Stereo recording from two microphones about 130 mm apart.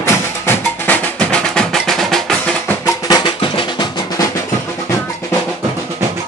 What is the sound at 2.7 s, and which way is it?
Drum, 25° left (ahead or behind).